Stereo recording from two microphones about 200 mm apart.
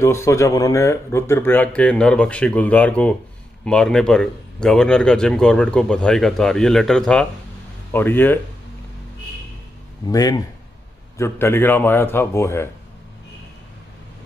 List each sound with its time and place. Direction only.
0.0 s speech: 15° left (ahead or behind)
10.0 s speech: 20° left (ahead or behind)